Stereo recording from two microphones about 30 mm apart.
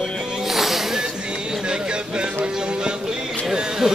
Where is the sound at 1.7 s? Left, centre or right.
Right.